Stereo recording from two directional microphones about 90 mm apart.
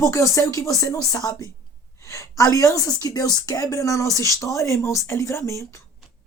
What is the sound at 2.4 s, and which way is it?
Speech, 35° left (ahead or behind).